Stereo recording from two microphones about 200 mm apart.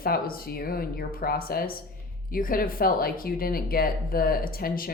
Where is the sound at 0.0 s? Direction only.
45° left (ahead or behind).